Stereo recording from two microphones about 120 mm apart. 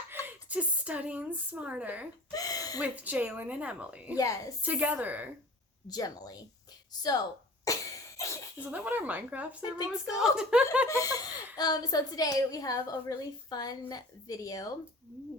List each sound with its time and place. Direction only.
0.3 s speech: 10° right (ahead or behind)
2.3 s speech: 30° left (ahead or behind)
2.7 s speech: 15° right (ahead or behind)
4.2 s laughter: 30° left (ahead or behind)
4.6 s speech: 15° right (ahead or behind)
5.9 s a woman's voice: 35° left (ahead or behind)
7.0 s a sound: 35° left (ahead or behind)
8.7 s speech: 15° right (ahead or behind)
9.7 s a woman's voice: 35° left (ahead or behind)
10.2 s speech: 5° right (ahead or behind)
10.8 s laughter: 25° left (ahead or behind)
11.5 s a woman's voice: 35° left (ahead or behind)